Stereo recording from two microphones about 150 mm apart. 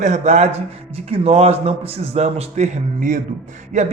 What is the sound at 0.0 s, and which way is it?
A man's voice, 50° right (ahead or behind).